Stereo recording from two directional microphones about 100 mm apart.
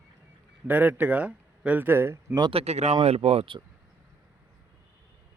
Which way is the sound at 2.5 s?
85° right.